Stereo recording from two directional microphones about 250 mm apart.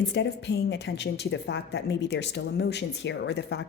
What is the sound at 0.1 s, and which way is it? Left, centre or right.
A woman's voice, left.